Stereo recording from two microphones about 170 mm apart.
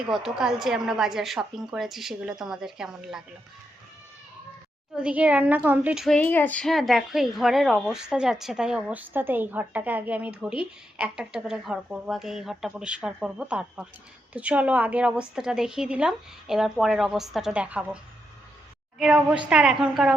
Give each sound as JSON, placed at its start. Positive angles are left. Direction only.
{"t": 0.1, "sound": "a woman's voice", "side_deg": -5}
{"t": 4.9, "sound": "a woman's voice", "side_deg": -5}